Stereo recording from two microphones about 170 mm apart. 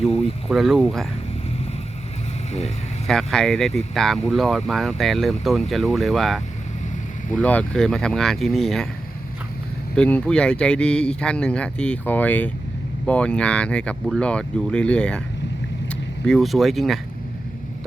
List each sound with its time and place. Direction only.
0.4 s speech: centre (ahead or behind)
2.5 s speech: 40° left (ahead or behind)
3.1 s speech: centre (ahead or behind)
9.9 s speech: 5° left (ahead or behind)